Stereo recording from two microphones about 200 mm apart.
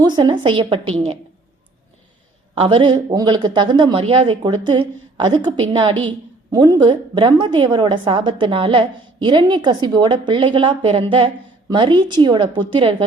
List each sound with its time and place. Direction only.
0.0 s a woman's voice: 20° right (ahead or behind)
2.6 s a woman's voice: 25° right (ahead or behind)